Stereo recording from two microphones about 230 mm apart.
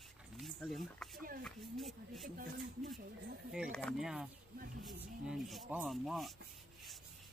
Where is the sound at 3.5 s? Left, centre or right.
Centre.